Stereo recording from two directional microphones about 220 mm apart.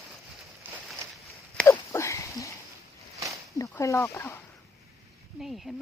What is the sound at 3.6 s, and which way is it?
Speech, 15° left (ahead or behind).